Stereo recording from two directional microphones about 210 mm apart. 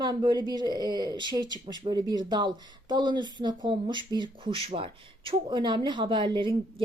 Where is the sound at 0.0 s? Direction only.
20° right (ahead or behind).